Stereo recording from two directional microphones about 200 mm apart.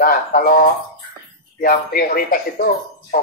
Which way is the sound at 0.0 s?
45° left (ahead or behind).